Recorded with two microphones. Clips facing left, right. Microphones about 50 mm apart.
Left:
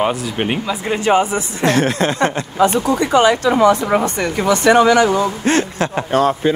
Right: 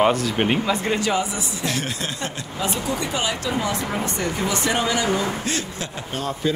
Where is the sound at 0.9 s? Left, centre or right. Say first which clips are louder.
Left 8 dB; left.